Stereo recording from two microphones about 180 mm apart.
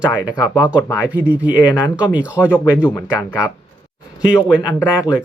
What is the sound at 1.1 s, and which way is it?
Speech, 10° right (ahead or behind).